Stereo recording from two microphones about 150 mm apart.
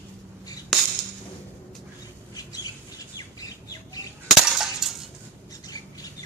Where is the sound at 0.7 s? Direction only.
Centre (ahead or behind).